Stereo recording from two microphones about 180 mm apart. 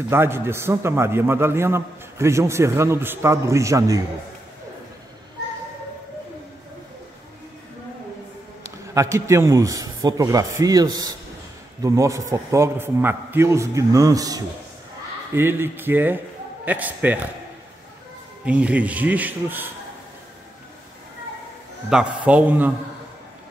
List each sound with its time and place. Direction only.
0.1 s a man's voice: 15° right (ahead or behind)
8.9 s a man's voice: 15° right (ahead or behind)
18.4 s a man's voice: 5° right (ahead or behind)
21.8 s a man's voice: 5° right (ahead or behind)